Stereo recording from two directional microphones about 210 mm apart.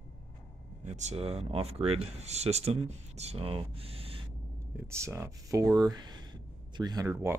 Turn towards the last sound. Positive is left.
turn(degrees=-15)  # may be behind; listen again after turning